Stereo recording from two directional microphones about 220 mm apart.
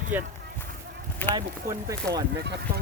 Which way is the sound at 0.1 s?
10° right (ahead or behind).